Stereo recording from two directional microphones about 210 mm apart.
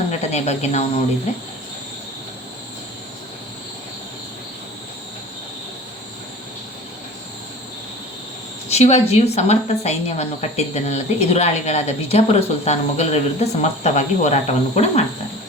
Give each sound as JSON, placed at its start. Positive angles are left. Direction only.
{"t": 0.3, "sound": "speech", "side_deg": 30}
{"t": 8.7, "sound": "speech", "side_deg": 30}